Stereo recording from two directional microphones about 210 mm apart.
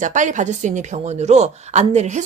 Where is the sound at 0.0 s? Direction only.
35° right (ahead or behind).